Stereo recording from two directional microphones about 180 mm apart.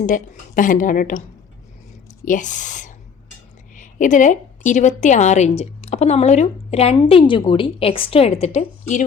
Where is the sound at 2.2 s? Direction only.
45° left (ahead or behind).